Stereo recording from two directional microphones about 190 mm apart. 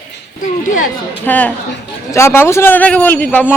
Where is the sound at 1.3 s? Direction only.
10° left (ahead or behind).